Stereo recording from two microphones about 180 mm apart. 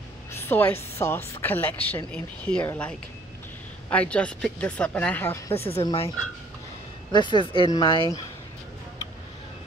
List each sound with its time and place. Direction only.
0.3 s a sound: 10° left (ahead or behind)
0.9 s speech: 15° left (ahead or behind)
3.9 s speech: 5° left (ahead or behind)
5.5 s speech: 35° left (ahead or behind)
7.1 s speech: 25° left (ahead or behind)